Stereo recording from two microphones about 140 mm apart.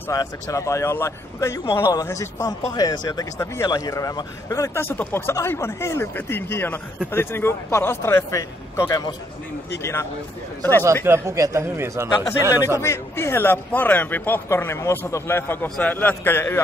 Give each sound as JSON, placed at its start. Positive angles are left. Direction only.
{"t": 0.1, "sound": "a man's voice", "side_deg": 25}
{"t": 11.1, "sound": "a man's voice", "side_deg": -20}
{"t": 12.2, "sound": "a man's voice", "side_deg": 20}